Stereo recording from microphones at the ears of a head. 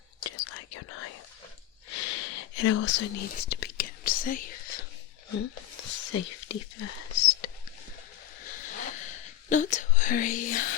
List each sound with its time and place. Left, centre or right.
0.2 s whispering: left